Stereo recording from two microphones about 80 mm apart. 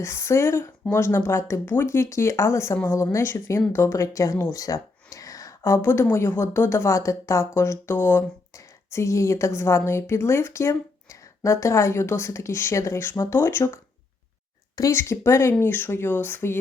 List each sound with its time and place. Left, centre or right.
0.0 s speech: left
1.6 s speech: left
1.9 s speech: left
14.9 s speech: left